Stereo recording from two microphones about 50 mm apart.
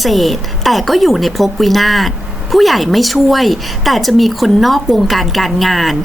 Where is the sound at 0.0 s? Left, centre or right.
Centre.